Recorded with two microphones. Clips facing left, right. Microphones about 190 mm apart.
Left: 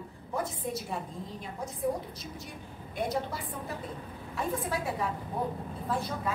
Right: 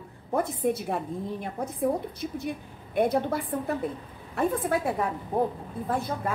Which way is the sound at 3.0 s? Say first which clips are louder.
Right 8 dB; 55° right (ahead or behind).